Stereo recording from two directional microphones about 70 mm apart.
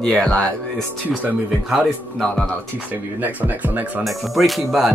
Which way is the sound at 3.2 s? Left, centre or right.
Right.